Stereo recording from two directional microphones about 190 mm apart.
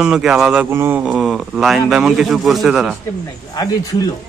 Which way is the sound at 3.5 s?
20° left (ahead or behind).